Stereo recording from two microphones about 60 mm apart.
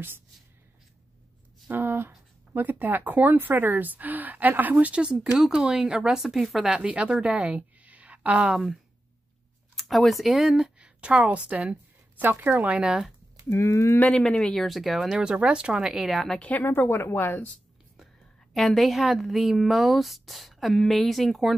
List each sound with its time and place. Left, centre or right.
1.7 s speech: right
5.0 s a woman's voice: centre
9.8 s speech: centre
10.8 s a woman's voice: centre
12.2 s speech: right
12.7 s speech: centre
13.5 s speech: left
14.1 s speech: centre
14.5 s speech: centre
16.3 s speech: left
16.6 s a woman's voice: left
17.2 s speech: left
18.5 s speech: centre